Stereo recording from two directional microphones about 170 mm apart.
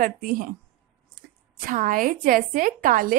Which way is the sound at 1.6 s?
55° right (ahead or behind).